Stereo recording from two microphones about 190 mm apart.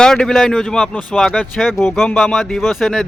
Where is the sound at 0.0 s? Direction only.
5° left (ahead or behind).